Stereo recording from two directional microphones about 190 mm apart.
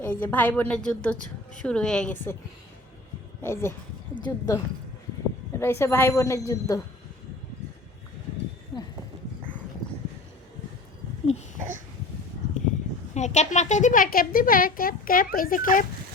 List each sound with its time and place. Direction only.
0.0 s a woman's voice: 10° left (ahead or behind)
3.4 s a woman's voice: 15° left (ahead or behind)
13.1 s a woman's voice: 40° left (ahead or behind)